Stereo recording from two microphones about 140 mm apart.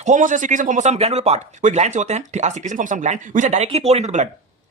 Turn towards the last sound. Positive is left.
turn(degrees=-55)  # may be behind; listen again after turning